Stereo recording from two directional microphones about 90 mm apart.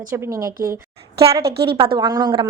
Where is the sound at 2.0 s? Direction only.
50° right (ahead or behind).